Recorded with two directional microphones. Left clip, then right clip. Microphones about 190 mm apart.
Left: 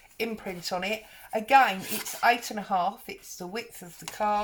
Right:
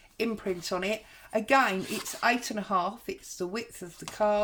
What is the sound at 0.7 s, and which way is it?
Speech, 45° right (ahead or behind).